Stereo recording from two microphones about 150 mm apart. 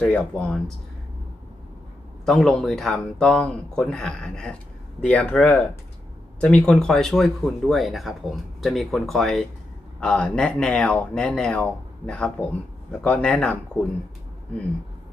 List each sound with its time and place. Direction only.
0.0 s speech: 5° left (ahead or behind)
2.2 s speech: 5° left (ahead or behind)